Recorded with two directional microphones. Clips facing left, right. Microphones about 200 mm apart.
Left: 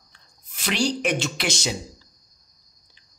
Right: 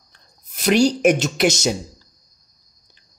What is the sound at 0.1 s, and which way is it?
Speech, 40° right (ahead or behind).